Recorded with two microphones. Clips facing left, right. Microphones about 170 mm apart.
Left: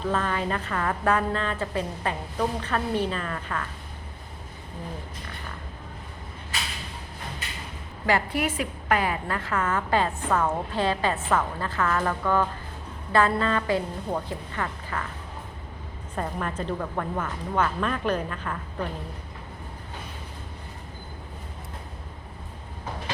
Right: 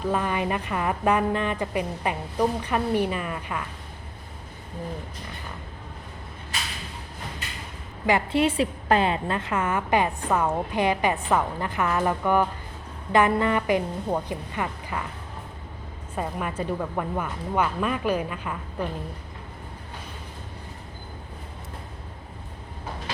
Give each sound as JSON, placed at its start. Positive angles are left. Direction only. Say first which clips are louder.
{"t": 0.0, "sound": "a woman's voice", "louder": "right 1 dB", "side_deg": -15}
{"t": 8.0, "sound": "a woman's voice", "louder": "right 3 dB", "side_deg": -20}
{"t": 16.1, "sound": "a woman's voice", "louder": "right 1 dB", "side_deg": -10}